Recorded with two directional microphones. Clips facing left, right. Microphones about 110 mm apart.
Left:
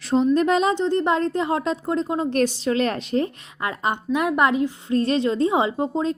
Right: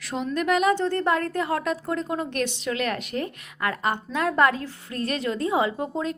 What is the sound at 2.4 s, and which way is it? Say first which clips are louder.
Speech: left 9 dB; 35° left (ahead or behind).